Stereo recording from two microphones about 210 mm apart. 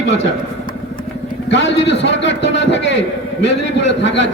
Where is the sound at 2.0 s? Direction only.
60° left (ahead or behind).